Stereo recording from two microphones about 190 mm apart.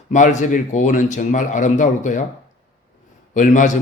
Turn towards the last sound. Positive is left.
turn(degrees=40)  # may be behind; listen again after turning